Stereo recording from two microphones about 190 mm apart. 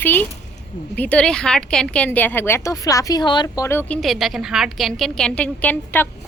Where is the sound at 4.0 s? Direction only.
Centre (ahead or behind).